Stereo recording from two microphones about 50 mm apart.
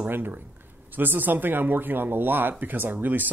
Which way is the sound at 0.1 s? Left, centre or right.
Right.